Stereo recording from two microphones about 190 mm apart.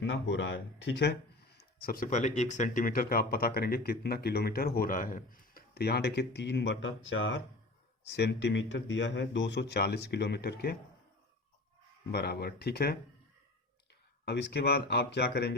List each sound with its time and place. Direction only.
0.0 s speech: 70° left (ahead or behind)
1.5 s speech: 50° left (ahead or behind); by 7.4 s 75° left (ahead or behind)
8.0 s a man's voice: 60° left (ahead or behind)
12.1 s a man's voice: 55° left (ahead or behind)
14.3 s a man's voice: 65° left (ahead or behind)